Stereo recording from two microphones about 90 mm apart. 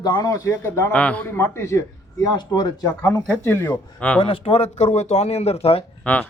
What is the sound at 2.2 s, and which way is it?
Speech, 50° left (ahead or behind).